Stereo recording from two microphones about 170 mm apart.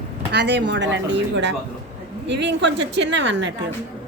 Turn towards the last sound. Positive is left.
turn(degrees=-90)